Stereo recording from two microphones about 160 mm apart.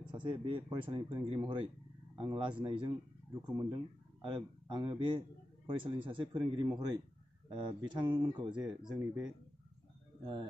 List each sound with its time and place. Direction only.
0.0 s speech: 30° right (ahead or behind)